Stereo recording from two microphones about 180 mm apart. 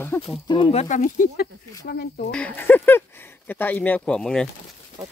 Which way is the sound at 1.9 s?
65° left (ahead or behind).